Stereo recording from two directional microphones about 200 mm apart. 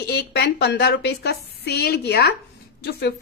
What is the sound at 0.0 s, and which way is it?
A woman's voice, 55° left (ahead or behind).